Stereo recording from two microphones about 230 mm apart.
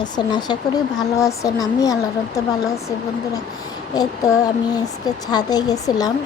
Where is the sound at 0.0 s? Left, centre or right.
Centre.